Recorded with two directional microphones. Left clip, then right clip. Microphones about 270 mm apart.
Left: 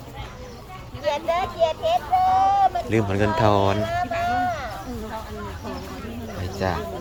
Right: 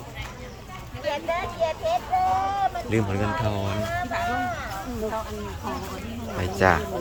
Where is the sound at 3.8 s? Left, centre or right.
Left.